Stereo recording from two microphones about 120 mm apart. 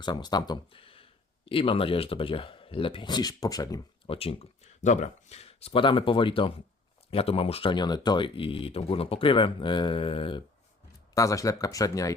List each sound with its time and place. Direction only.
0.0 s speech: 35° left (ahead or behind)
4.0 s speech: 50° left (ahead or behind)
4.8 s speech: 80° left; by 10.4 s 45° left (ahead or behind)
11.1 s speech: 25° left (ahead or behind)